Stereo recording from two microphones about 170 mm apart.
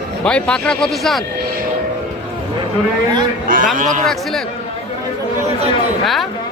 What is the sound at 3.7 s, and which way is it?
Speech, 50° right (ahead or behind).